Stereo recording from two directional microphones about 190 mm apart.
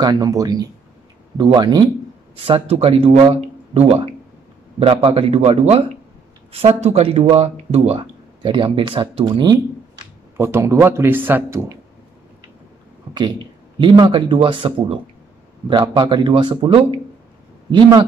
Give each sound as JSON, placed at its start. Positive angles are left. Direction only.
{"t": 0.0, "sound": "a man's voice", "side_deg": -20}
{"t": 13.7, "sound": "speech", "side_deg": -25}